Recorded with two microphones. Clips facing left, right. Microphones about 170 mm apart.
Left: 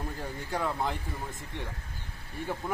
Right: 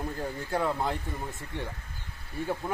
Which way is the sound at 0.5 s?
5° right (ahead or behind).